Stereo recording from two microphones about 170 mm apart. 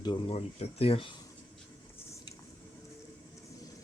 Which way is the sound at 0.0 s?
30° left (ahead or behind).